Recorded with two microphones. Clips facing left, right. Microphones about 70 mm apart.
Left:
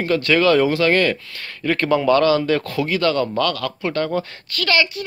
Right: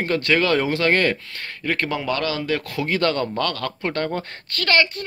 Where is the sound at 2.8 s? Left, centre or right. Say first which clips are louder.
Even; right.